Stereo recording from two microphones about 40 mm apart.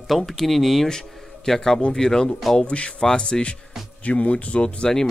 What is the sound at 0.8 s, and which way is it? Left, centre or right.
A man's voice, centre.